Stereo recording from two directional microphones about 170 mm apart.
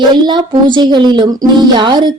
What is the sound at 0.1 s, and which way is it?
Speech, 25° right (ahead or behind).